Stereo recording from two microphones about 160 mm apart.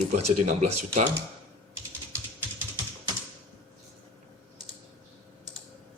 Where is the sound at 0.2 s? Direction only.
45° right (ahead or behind).